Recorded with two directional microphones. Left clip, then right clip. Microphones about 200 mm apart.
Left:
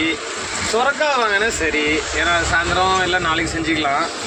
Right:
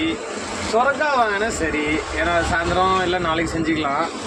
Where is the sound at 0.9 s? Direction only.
10° right (ahead or behind).